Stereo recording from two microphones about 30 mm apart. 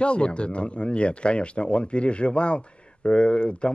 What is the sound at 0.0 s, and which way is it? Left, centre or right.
Speech, left.